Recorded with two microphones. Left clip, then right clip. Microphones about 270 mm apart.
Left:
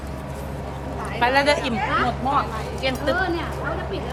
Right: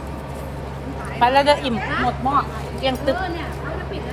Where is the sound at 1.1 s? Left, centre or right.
Centre.